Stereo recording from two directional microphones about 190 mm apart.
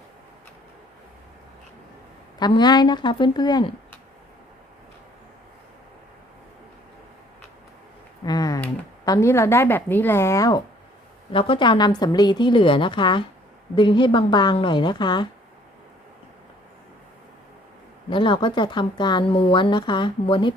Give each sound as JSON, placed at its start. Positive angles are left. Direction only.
{"t": 2.4, "sound": "speech", "side_deg": 20}
{"t": 8.2, "sound": "a sound", "side_deg": 20}
{"t": 9.0, "sound": "a woman's voice", "side_deg": 15}
{"t": 11.3, "sound": "speech", "side_deg": 30}
{"t": 18.1, "sound": "speech", "side_deg": 25}